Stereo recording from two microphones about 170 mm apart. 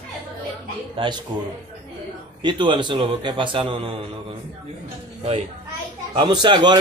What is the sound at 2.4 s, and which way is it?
A man's voice, 25° right (ahead or behind).